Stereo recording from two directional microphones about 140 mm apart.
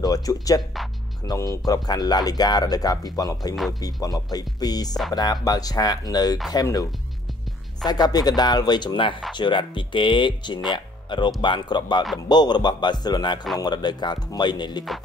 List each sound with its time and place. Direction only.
0.0 s speech: 25° left (ahead or behind)